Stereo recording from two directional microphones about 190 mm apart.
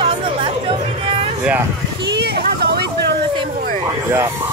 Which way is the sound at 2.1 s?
60° right (ahead or behind).